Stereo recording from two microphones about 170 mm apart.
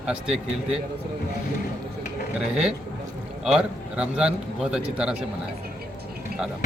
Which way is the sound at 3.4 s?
5° right (ahead or behind).